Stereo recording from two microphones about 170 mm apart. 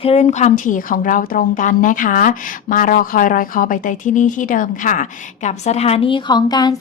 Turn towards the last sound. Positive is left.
turn(degrees=25)  # may be behind; listen again after turning